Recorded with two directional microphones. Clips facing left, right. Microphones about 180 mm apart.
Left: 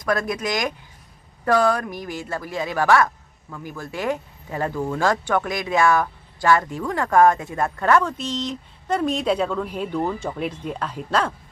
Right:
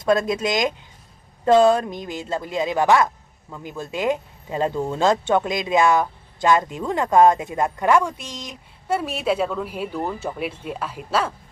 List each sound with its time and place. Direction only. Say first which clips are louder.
0.0 s speech: right 4 dB; 25° right (ahead or behind); by 11.3 s 5° right (ahead or behind)